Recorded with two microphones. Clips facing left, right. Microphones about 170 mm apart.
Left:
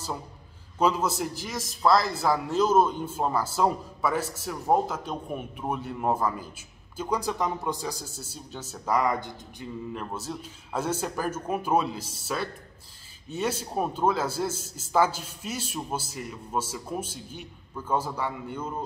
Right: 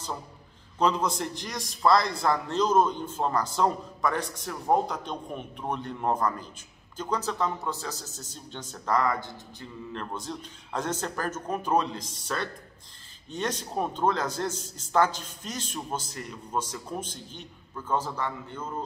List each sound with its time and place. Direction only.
0.7 s a man's voice: 5° left (ahead or behind)